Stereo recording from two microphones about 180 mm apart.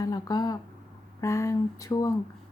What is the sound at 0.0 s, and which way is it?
A woman's voice, 20° left (ahead or behind).